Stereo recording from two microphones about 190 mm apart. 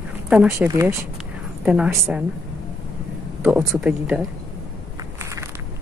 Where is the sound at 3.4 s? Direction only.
5° right (ahead or behind).